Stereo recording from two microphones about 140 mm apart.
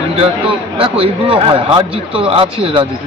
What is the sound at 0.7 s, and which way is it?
Speech, 40° right (ahead or behind).